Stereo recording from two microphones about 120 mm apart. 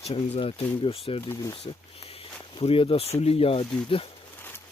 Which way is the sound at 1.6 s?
55° left (ahead or behind).